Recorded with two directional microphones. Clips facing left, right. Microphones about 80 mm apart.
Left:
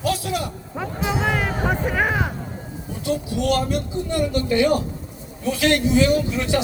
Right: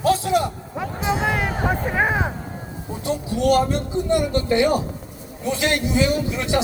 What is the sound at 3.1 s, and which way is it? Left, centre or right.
Speech, right.